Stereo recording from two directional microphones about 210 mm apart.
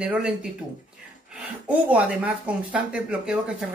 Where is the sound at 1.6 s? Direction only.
5° right (ahead or behind).